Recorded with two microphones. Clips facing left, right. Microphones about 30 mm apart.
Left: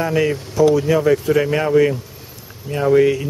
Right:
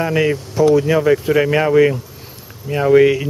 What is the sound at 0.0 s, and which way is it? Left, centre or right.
Speech, centre.